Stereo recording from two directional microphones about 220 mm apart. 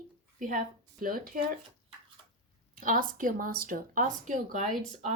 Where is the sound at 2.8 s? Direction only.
40° right (ahead or behind).